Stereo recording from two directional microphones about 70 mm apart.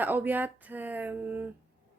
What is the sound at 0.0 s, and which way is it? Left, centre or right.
Speech, right.